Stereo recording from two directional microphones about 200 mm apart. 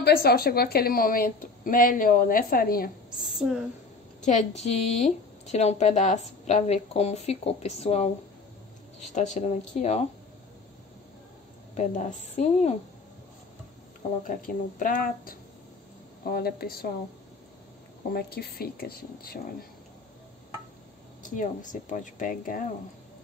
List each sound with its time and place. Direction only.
0.0 s a woman's voice: 50° left (ahead or behind)
3.3 s speech: 5° right (ahead or behind)
4.2 s speech: 35° left (ahead or behind)
9.1 s speech: 35° left (ahead or behind)
11.7 s speech: 40° left (ahead or behind)
14.2 s a woman's voice: 40° left (ahead or behind)
18.1 s a woman's voice: 50° left (ahead or behind)
21.2 s speech: 40° left (ahead or behind)